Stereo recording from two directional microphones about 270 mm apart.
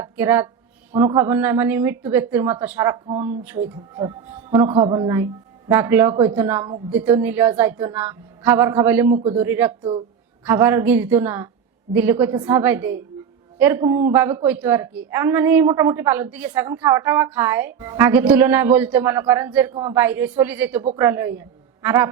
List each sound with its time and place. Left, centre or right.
0.0 s a woman's voice: centre
9.0 s a man's voice: right
9.4 s a woman's voice: centre